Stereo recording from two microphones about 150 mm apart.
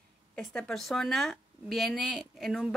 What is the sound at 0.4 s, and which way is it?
Speech, 5° left (ahead or behind).